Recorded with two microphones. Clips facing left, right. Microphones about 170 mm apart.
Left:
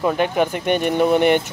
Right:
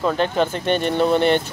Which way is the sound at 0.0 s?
10° left (ahead or behind).